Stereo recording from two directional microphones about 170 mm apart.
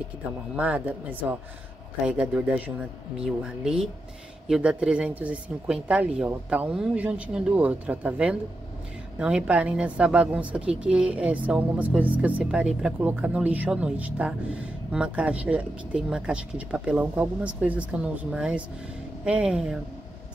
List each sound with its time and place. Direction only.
0.6 s speech: 10° right (ahead or behind)